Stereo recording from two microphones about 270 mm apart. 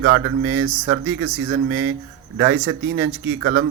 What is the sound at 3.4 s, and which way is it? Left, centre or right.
Speech, right.